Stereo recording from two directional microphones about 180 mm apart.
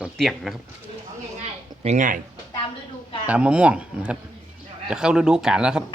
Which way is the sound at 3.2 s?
5° right (ahead or behind).